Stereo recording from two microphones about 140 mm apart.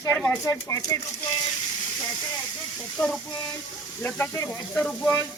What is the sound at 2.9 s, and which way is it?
Speech, 5° left (ahead or behind).